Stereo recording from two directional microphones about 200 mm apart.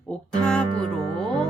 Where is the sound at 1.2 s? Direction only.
5° left (ahead or behind).